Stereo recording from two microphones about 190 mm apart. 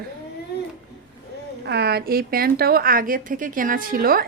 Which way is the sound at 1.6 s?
60° right (ahead or behind).